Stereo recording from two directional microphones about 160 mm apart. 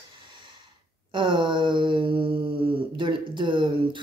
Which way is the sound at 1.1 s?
30° right (ahead or behind).